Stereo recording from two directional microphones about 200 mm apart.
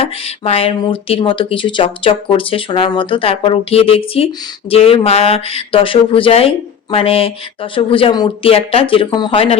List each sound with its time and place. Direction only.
0.0 s speech: 30° left (ahead or behind)